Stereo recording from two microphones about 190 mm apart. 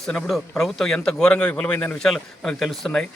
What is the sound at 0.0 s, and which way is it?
A man's voice, centre (ahead or behind).